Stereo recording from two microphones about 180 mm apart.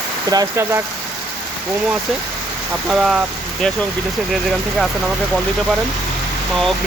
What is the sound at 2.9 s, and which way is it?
Speech, 5° right (ahead or behind).